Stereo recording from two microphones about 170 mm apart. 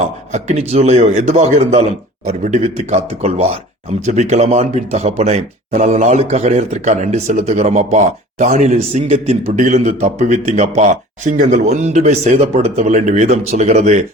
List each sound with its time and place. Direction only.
0.3 s a man's voice: 45° right (ahead or behind)